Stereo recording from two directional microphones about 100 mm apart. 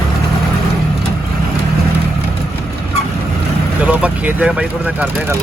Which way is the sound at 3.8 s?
15° right (ahead or behind).